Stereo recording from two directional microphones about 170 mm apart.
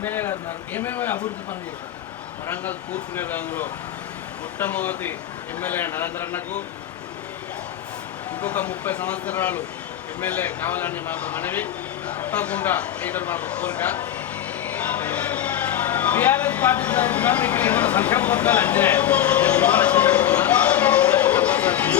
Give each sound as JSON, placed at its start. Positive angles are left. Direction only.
{"t": 0.0, "sound": "speech", "side_deg": 10}
{"t": 3.2, "sound": "speech", "side_deg": 10}
{"t": 8.4, "sound": "speech", "side_deg": 10}
{"t": 14.6, "sound": "a sound", "side_deg": 10}